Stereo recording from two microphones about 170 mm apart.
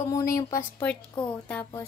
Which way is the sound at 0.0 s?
20° left (ahead or behind).